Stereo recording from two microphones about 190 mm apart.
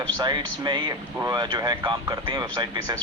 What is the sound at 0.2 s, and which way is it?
Speech, 20° right (ahead or behind).